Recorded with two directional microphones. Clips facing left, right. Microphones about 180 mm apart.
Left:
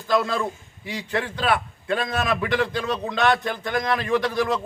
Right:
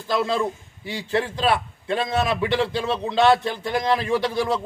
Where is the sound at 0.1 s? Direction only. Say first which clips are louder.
Even; 30° right (ahead or behind).